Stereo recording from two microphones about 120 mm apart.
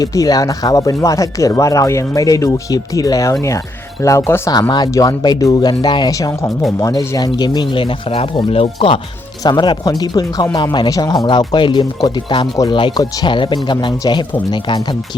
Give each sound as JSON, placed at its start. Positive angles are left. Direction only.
{"t": 0.0, "sound": "speech", "side_deg": 30}
{"t": 4.7, "sound": "speech", "side_deg": 35}
{"t": 7.3, "sound": "speech", "side_deg": 40}
{"t": 9.4, "sound": "speech", "side_deg": 35}
{"t": 13.0, "sound": "speech", "side_deg": 30}
{"t": 13.3, "sound": "speech", "side_deg": 45}